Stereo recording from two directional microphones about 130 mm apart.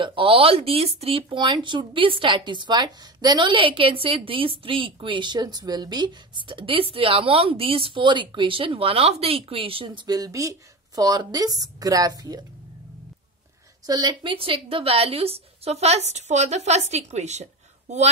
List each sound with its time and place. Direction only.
0.0 s speech: 40° right (ahead or behind)
9.8 s a woman's voice: 30° right (ahead or behind)
13.8 s a woman's voice: 35° right (ahead or behind); by 18.1 s 60° right (ahead or behind)